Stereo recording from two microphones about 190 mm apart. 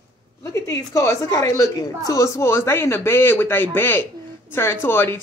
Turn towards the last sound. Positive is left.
turn(degrees=10)  # may be behind; listen again after turning